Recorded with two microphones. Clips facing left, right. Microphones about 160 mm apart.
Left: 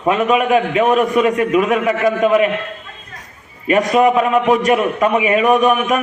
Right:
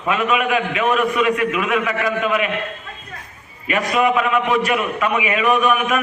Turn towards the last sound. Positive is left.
turn(degrees=40)  # may be behind; listen again after turning